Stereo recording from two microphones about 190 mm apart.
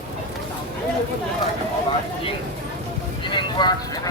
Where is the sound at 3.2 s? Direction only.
25° left (ahead or behind).